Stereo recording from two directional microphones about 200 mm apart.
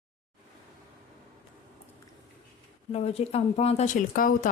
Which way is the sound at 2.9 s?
30° left (ahead or behind).